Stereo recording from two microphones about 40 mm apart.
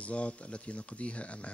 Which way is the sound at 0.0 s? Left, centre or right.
Left.